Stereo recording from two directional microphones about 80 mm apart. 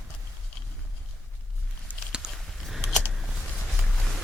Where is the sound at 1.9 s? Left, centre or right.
Centre.